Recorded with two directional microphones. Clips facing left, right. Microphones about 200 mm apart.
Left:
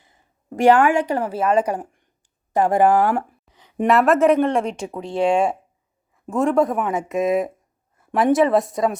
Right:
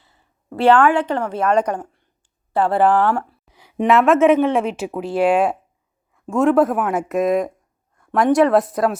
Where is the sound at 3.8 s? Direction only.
Centre (ahead or behind).